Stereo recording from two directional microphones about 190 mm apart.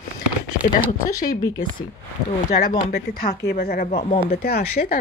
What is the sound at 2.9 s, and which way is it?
Speech, 60° left (ahead or behind).